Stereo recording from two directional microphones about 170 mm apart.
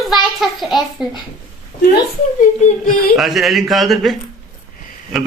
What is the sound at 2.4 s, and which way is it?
Speech, 50° left (ahead or behind).